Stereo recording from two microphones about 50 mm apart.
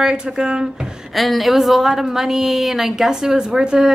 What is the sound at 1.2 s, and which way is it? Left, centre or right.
A woman's voice, centre.